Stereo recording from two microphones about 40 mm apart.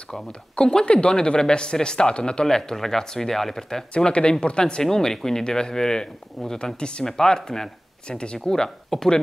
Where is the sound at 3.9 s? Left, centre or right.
Left.